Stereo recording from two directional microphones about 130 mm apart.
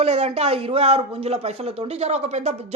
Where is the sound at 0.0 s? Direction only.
55° right (ahead or behind).